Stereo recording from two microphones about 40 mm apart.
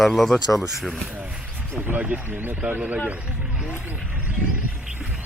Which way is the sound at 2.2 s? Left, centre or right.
Right.